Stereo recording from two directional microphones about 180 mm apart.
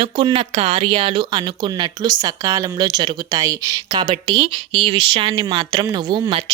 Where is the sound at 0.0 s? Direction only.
30° right (ahead or behind).